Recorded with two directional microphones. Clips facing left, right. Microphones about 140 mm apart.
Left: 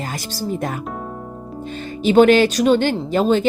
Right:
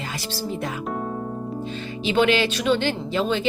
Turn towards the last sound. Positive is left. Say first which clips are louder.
# left 7 dB
turn(degrees=45)  # may be behind; listen again after turning